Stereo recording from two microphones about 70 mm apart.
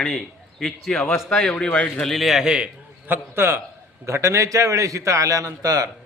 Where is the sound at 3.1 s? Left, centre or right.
Right.